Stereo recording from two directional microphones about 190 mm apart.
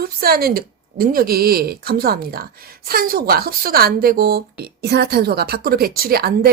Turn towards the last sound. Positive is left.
turn(degrees=-55)  # may be behind; listen again after turning